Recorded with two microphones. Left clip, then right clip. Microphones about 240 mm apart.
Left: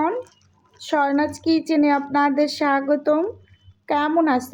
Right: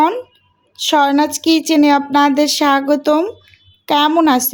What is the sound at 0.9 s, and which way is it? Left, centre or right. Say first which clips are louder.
A woman's voice: right 7 dB; right.